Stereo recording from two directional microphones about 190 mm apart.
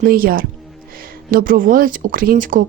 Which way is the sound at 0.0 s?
50° right (ahead or behind).